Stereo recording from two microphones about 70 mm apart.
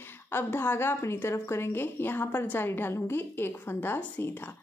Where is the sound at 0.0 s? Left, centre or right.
Left.